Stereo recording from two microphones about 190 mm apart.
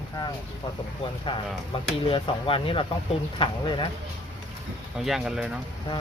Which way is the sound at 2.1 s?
30° left (ahead or behind).